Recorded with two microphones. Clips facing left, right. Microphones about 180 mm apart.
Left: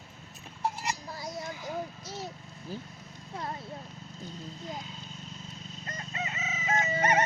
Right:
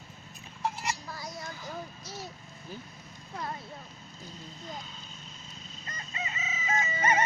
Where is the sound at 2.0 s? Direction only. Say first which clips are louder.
Left 3 dB; 25° left (ahead or behind).